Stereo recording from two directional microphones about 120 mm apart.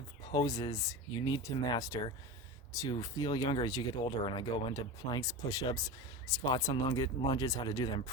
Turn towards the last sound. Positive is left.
turn(degrees=35)  # may be behind; listen again after turning